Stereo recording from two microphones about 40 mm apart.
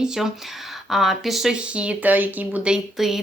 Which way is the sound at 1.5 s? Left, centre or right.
Right.